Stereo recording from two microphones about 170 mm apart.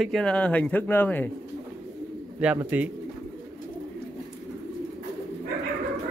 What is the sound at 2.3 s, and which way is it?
Speech, 10° right (ahead or behind).